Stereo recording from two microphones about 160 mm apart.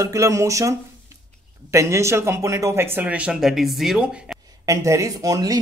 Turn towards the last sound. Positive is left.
turn(degrees=-25)  # may be behind; listen again after turning